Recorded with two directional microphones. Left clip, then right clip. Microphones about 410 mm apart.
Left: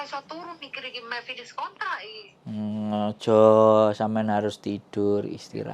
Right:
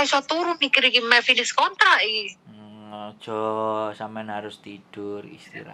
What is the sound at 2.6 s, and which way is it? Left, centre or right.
Speech, left.